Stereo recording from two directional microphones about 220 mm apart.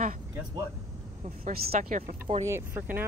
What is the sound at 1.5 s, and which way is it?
Speech, 40° right (ahead or behind).